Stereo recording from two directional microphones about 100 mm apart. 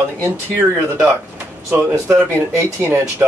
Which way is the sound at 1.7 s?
20° right (ahead or behind).